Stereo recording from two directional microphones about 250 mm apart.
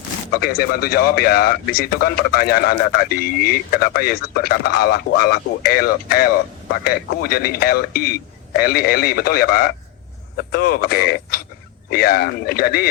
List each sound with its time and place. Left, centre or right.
0.3 s a man's voice: left